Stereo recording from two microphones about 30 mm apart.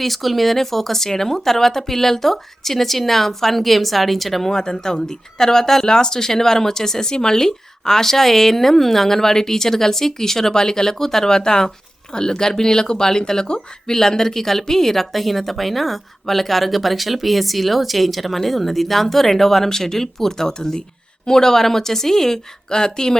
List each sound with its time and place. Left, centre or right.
0.0 s speech: centre
4.4 s speech: centre
15.1 s speech: centre
22.7 s speech: left